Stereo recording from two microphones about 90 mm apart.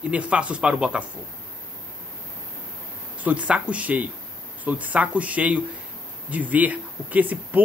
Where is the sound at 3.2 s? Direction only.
15° right (ahead or behind).